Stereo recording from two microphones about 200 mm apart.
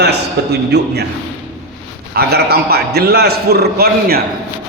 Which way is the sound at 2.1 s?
50° right (ahead or behind).